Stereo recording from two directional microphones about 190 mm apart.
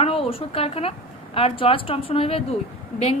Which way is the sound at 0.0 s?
30° left (ahead or behind).